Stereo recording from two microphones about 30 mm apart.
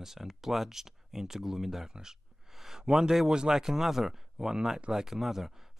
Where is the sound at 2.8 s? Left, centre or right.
Right.